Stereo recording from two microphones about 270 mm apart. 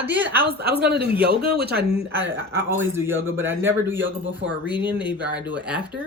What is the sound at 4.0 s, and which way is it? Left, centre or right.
Speech, right.